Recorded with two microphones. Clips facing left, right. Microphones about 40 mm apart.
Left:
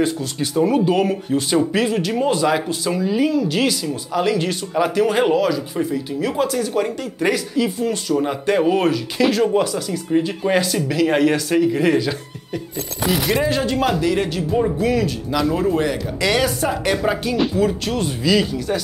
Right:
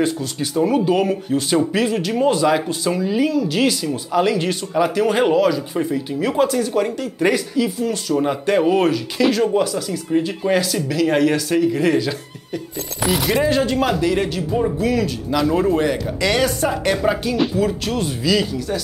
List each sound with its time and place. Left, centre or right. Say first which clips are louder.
0.0 s speech: even; centre
7.5 s speech: even; centre
8.2 s speech: right 2 dB; centre
13.5 s speech: right 2 dB; centre
13.7 s speech: even; centre
16.3 s speech: even; centre
16.6 s speech: right 1 dB; centre